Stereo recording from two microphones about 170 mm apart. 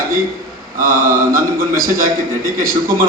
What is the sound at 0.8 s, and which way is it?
Mantra, 55° right (ahead or behind).